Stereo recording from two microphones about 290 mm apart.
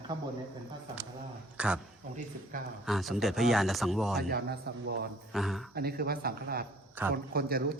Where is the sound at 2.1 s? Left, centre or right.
Right.